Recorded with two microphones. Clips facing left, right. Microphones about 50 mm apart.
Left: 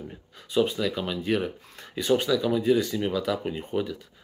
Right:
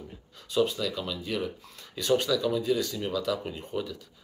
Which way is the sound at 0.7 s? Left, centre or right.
Left.